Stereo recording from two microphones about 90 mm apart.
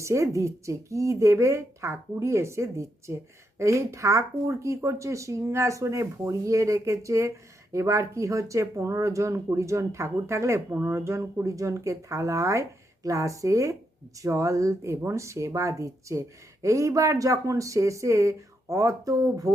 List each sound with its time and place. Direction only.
0.0 s speech: 35° right (ahead or behind)